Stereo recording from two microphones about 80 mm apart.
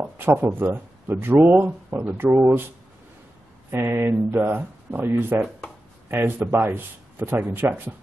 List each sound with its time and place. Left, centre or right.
0.0 s speech: right
2.3 s speech: right
3.7 s speech: right